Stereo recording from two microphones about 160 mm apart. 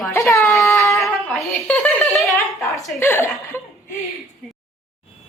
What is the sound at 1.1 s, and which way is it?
Speech, centre (ahead or behind).